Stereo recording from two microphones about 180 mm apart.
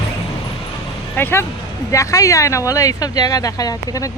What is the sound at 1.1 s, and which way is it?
Speech, 10° left (ahead or behind).